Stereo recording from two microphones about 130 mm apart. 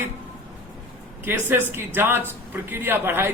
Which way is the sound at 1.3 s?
15° right (ahead or behind).